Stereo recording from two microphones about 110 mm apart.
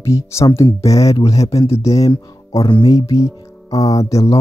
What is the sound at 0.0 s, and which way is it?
Speech, 25° left (ahead or behind).